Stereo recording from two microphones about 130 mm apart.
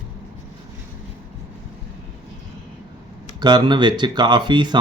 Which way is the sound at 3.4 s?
35° right (ahead or behind).